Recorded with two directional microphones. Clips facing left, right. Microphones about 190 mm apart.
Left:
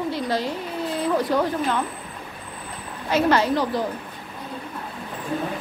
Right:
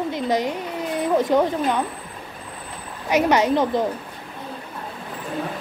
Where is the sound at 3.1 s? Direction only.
15° right (ahead or behind).